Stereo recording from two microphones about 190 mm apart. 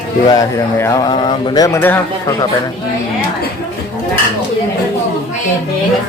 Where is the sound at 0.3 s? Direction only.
15° left (ahead or behind).